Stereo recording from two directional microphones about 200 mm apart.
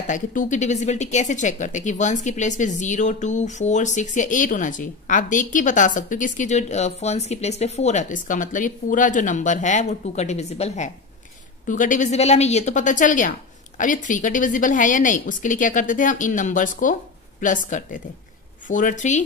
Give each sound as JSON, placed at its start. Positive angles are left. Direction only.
{"t": 0.0, "sound": "speech", "side_deg": 40}